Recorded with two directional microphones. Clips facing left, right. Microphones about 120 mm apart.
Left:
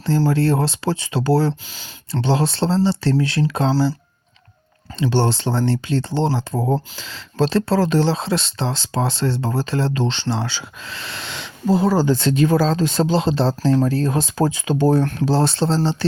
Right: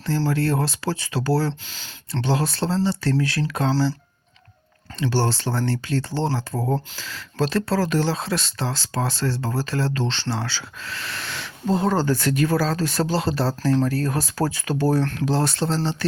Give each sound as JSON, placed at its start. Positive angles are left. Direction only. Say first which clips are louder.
{"t": 0.3, "sound": "speech", "louder": "left 4 dB", "side_deg": 25}
{"t": 1.7, "sound": "speech", "louder": "left 3 dB", "side_deg": 10}
{"t": 2.2, "sound": "speech", "louder": "left 4 dB", "side_deg": 25}
{"t": 4.9, "sound": "speech", "louder": "left 4 dB", "side_deg": 20}
{"t": 11.7, "sound": "speech", "louder": "left 4 dB", "side_deg": 5}
{"t": 12.0, "sound": "speech", "louder": "left 4 dB", "side_deg": 25}